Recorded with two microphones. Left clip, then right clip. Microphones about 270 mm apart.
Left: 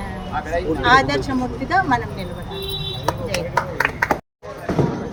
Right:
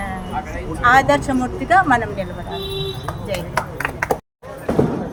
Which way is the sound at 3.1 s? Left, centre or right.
Left.